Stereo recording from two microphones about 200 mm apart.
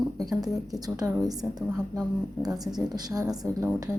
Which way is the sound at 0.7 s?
20° right (ahead or behind).